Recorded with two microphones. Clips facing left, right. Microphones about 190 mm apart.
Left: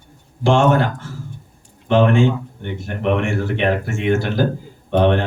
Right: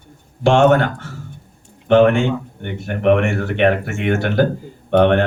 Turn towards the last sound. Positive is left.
turn(degrees=-65)  # may be behind; listen again after turning